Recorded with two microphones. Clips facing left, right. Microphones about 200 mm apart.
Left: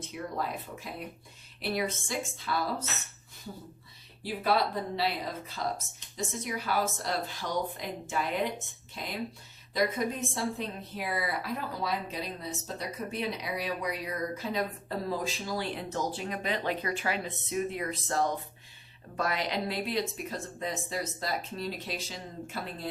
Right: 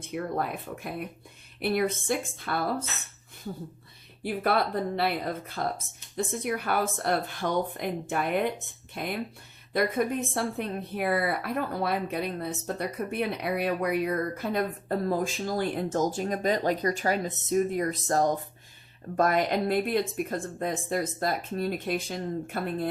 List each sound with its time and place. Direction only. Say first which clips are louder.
0.0 s a woman's voice: right 5 dB; 55° right (ahead or behind)
4.2 s a woman's voice: right 2 dB; 55° right (ahead or behind)